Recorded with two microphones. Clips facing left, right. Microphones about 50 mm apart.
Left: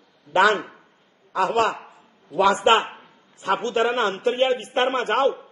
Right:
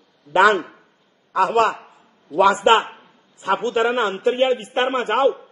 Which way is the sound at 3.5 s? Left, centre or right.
Centre.